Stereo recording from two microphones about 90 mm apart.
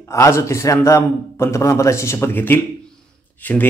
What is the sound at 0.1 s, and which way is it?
A man's voice, 35° left (ahead or behind).